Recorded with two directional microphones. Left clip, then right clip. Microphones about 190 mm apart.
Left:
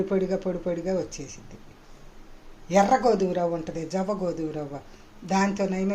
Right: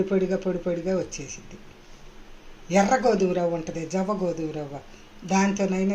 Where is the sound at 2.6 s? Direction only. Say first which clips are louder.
Left 1 dB; centre (ahead or behind).